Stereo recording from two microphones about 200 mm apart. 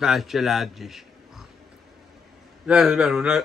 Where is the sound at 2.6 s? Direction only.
5° right (ahead or behind).